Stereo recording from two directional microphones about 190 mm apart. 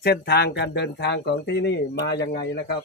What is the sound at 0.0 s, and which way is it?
Speech, 60° left (ahead or behind).